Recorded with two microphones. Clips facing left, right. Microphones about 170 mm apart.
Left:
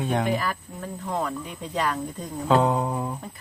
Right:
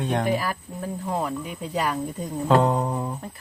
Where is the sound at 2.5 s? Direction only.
Centre (ahead or behind).